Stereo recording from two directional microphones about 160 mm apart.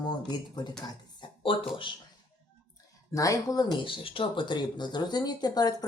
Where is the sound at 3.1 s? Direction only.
20° left (ahead or behind).